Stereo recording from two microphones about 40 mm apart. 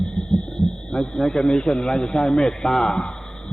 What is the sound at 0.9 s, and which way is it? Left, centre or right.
A man's voice, centre.